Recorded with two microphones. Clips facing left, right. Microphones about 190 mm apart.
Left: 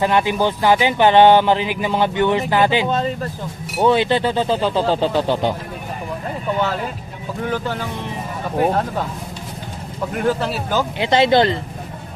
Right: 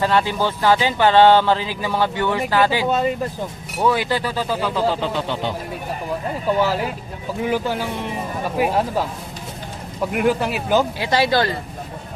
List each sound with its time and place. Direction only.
0.0 s speech: 15° left (ahead or behind); by 5.4 s 35° left (ahead or behind)
6.6 s speech: 5° right (ahead or behind)
10.1 s speech: 10° right (ahead or behind)
10.9 s speech: 20° left (ahead or behind)